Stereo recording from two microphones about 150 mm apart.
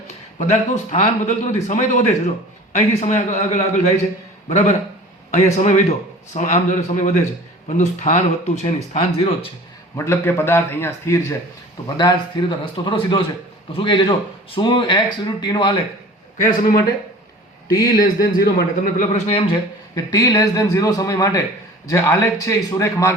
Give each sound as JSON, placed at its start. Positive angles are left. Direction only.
{"t": 0.3, "sound": "a man's voice", "side_deg": 50}
{"t": 9.9, "sound": "a man's voice", "side_deg": 15}
{"t": 11.9, "sound": "speech", "side_deg": 30}
{"t": 16.4, "sound": "speech", "side_deg": 70}
{"t": 17.7, "sound": "speech", "side_deg": 85}
{"t": 19.1, "sound": "speech", "side_deg": 40}
{"t": 20.1, "sound": "speech", "side_deg": 25}